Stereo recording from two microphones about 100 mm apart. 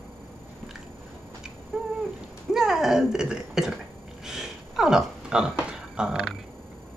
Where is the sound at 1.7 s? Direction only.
15° right (ahead or behind).